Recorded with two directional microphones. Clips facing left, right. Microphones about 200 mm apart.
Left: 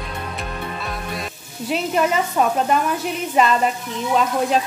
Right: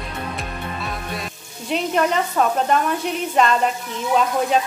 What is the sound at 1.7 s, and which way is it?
Speech, 5° left (ahead or behind).